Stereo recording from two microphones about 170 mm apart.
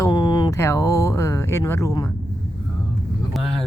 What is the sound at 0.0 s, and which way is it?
Speech, 25° left (ahead or behind).